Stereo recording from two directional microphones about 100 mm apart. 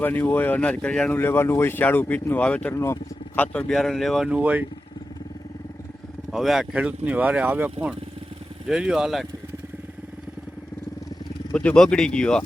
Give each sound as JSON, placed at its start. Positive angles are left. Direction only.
{"t": 0.0, "sound": "speech", "side_deg": 20}
{"t": 1.1, "sound": "speech", "side_deg": 25}
{"t": 2.7, "sound": "speech", "side_deg": 30}
{"t": 3.3, "sound": "speech", "side_deg": 15}
{"t": 3.7, "sound": "speech", "side_deg": 0}
{"t": 4.3, "sound": "speech", "side_deg": -15}
{"t": 6.3, "sound": "speech", "side_deg": -5}
{"t": 6.7, "sound": "speech", "side_deg": -15}
{"t": 8.6, "sound": "speech", "side_deg": -5}
{"t": 11.5, "sound": "speech", "side_deg": 10}